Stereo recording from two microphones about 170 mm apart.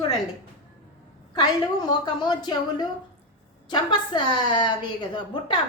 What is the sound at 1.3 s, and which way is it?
A woman's voice, 25° left (ahead or behind).